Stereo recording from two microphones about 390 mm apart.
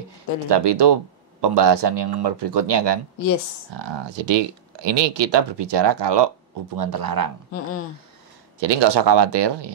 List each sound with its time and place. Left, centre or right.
0.5 s speech: right
6.8 s speech: right
8.5 s speech: right